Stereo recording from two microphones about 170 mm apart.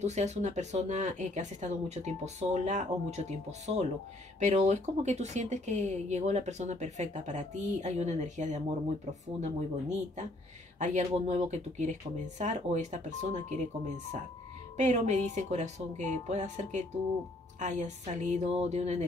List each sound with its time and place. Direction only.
0.0 s speech: 40° right (ahead or behind)